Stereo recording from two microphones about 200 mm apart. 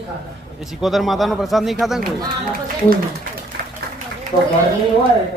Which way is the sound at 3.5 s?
60° right (ahead or behind).